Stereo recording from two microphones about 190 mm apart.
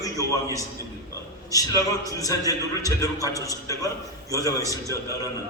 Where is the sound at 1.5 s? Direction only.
20° left (ahead or behind).